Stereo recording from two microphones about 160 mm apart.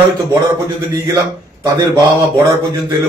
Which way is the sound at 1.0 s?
20° right (ahead or behind).